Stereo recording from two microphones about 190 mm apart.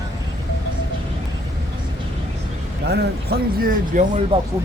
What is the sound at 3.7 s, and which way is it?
Speech, 40° right (ahead or behind).